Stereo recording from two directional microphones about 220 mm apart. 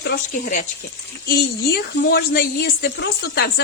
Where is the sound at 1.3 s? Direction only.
45° left (ahead or behind).